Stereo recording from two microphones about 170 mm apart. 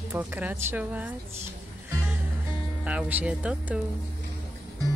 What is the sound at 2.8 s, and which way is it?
Speech, 10° right (ahead or behind).